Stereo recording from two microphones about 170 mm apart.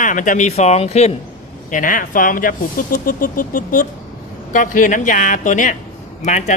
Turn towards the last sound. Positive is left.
turn(degrees=45)  # may be behind; listen again after turning